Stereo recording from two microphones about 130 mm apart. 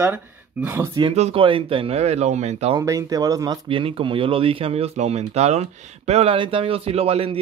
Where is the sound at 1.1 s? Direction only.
60° right (ahead or behind).